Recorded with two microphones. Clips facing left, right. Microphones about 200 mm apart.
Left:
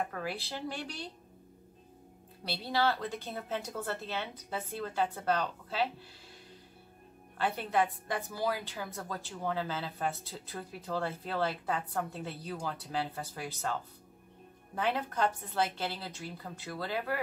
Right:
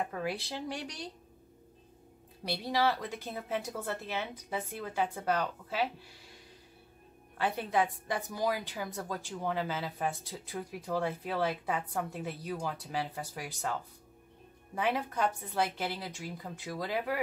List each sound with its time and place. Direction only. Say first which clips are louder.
0.1 s speech: right 2 dB; 20° right (ahead or behind)
2.8 s a woman's voice: left 1 dB; 10° right (ahead or behind)
7.3 s a woman's voice: even; 15° right (ahead or behind)
14.8 s a woman's voice: even; 10° right (ahead or behind)